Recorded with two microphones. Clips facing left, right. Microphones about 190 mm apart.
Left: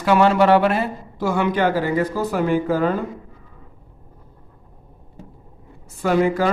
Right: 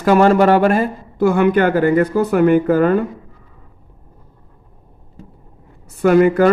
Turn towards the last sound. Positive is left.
turn(degrees=-60)  # may be behind; listen again after turning